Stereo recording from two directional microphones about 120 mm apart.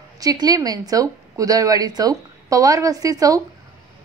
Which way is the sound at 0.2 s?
30° right (ahead or behind).